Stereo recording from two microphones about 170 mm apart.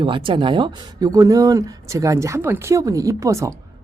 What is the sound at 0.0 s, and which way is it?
Speech, 30° right (ahead or behind).